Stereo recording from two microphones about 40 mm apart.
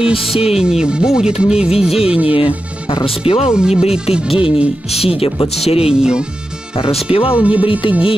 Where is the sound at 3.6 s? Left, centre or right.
Centre.